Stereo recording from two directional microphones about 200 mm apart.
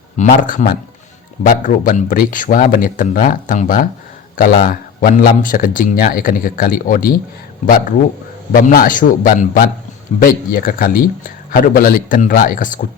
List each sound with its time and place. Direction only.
0.2 s a man's voice: 45° left (ahead or behind)
8.5 s speech: 45° left (ahead or behind)